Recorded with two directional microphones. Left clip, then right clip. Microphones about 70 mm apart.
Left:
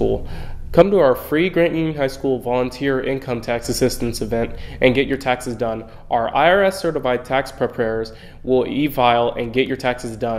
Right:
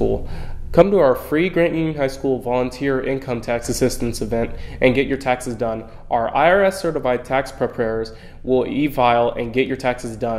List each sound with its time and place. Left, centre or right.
0.7 s speech: left